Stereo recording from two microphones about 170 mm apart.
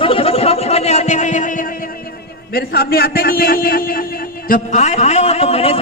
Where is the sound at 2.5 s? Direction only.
65° left (ahead or behind).